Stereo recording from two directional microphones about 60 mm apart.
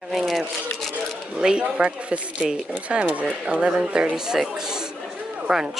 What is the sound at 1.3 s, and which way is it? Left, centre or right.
Speech, centre.